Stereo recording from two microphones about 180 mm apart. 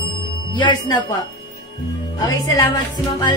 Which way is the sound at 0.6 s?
25° left (ahead or behind).